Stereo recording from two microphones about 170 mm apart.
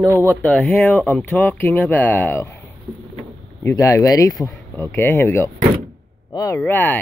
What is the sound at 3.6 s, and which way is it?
Speech, 20° left (ahead or behind).